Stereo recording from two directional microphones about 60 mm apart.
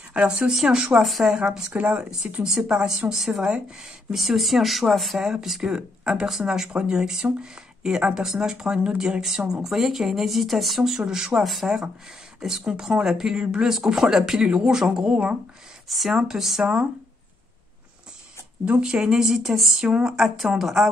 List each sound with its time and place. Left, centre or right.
0.1 s a woman's voice: centre
1.0 s a woman's voice: centre
1.8 s speech: right
2.0 s a woman's voice: centre
18.7 s a woman's voice: centre